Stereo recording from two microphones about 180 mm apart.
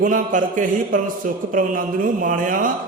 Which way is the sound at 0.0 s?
45° right (ahead or behind).